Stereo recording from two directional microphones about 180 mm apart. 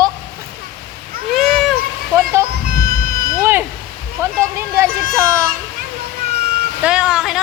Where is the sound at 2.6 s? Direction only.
55° right (ahead or behind).